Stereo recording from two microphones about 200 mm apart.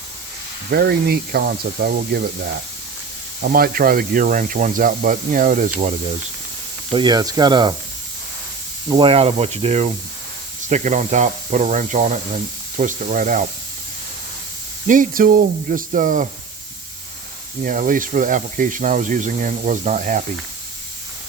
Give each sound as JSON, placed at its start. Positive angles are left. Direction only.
{"t": 0.7, "sound": "speech", "side_deg": -50}
{"t": 3.4, "sound": "speech", "side_deg": -45}
{"t": 6.9, "sound": "speech", "side_deg": -20}
{"t": 8.9, "sound": "speech", "side_deg": -25}
{"t": 14.8, "sound": "speech", "side_deg": -45}
{"t": 17.6, "sound": "speech", "side_deg": -45}